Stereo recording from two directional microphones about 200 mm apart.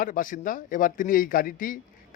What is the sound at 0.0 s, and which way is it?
Speech, 45° left (ahead or behind).